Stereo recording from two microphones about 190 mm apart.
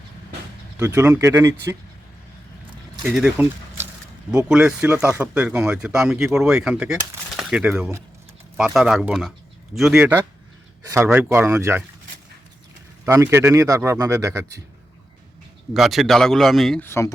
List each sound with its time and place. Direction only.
0.8 s speech: 15° right (ahead or behind)
3.0 s speech: 5° right (ahead or behind)
13.1 s speech: 15° right (ahead or behind)
15.7 s speech: centre (ahead or behind)
16.8 s speech: 15° left (ahead or behind)